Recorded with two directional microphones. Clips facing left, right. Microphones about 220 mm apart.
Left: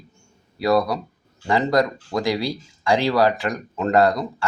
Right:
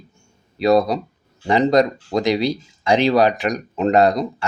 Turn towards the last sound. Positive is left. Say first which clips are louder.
# right 2 dB
turn(degrees=-20)  # may be behind; listen again after turning